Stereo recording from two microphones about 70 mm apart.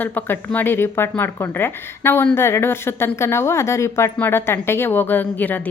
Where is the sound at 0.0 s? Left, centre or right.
Left.